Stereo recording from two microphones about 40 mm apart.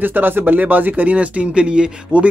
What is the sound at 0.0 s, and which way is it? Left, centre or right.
Speech, right.